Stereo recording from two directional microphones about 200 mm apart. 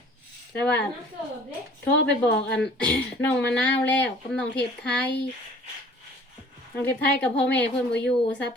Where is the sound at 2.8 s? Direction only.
5° left (ahead or behind).